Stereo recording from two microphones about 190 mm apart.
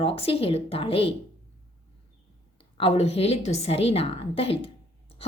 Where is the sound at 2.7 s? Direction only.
30° left (ahead or behind).